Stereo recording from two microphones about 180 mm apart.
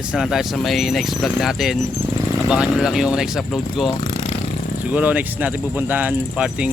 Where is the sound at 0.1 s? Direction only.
5° right (ahead or behind).